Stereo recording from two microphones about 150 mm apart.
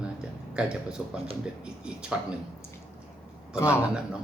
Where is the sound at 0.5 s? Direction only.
5° right (ahead or behind).